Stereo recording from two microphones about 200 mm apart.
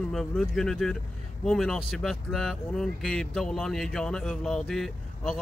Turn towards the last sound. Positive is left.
turn(degrees=0)  # may be behind; listen again after turning